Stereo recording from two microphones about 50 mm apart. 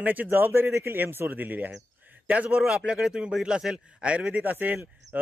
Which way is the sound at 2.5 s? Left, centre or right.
Centre.